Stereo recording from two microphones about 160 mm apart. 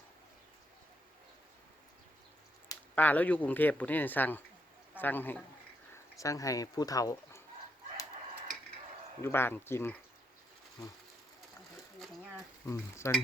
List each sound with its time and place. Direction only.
2.9 s a man's voice: 10° left (ahead or behind)
9.2 s speech: 15° left (ahead or behind)
12.6 s speech: 20° left (ahead or behind)